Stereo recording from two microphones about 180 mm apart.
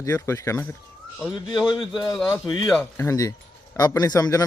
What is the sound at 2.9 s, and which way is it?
Speech, 15° left (ahead or behind).